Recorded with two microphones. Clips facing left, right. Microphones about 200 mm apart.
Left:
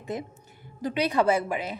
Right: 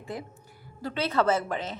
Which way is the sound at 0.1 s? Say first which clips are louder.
Left 4 dB; 20° left (ahead or behind).